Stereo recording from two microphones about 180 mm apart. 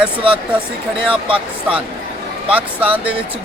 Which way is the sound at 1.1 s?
30° right (ahead or behind).